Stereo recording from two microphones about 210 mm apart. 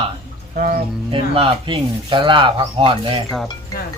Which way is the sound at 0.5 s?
45° right (ahead or behind).